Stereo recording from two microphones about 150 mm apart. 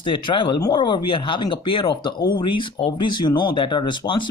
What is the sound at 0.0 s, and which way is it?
A man's voice, 35° left (ahead or behind).